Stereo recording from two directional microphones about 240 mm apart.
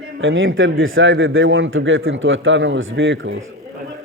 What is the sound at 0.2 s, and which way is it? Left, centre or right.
Speech, right.